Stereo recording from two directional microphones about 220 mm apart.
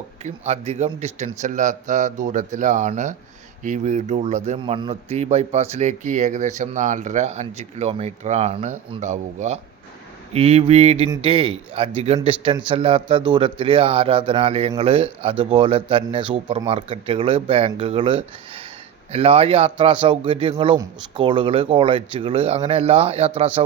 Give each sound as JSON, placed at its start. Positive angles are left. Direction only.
{"t": 0.3, "sound": "a man's voice", "side_deg": -30}